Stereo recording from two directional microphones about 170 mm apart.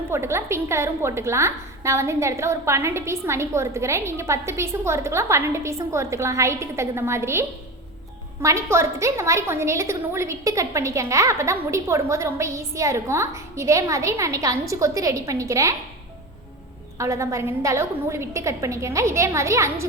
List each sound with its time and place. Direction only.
0.1 s a woman's voice: 15° right (ahead or behind)
17.0 s a woman's voice: 15° right (ahead or behind)